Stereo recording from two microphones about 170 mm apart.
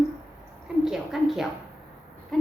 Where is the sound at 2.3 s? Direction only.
5° left (ahead or behind).